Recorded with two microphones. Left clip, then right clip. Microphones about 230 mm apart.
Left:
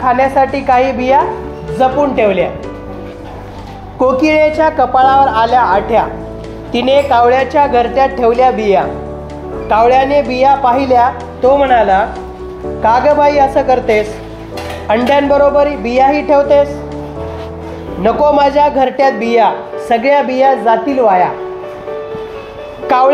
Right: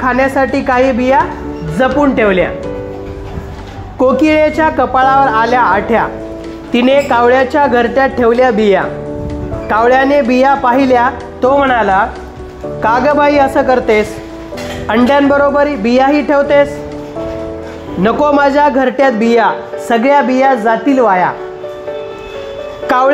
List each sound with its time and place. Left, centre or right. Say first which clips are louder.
0.0 s a man's voice: left 1 dB; right
4.0 s a man's voice: even; right
18.0 s a man's voice: left 1 dB; right
22.8 s music: left 1 dB; right